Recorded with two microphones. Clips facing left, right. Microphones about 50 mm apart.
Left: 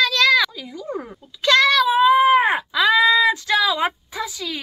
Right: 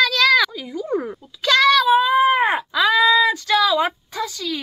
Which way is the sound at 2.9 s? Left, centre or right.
Centre.